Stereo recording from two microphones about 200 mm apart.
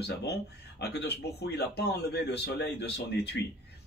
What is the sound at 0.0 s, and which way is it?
Speech, 55° left (ahead or behind).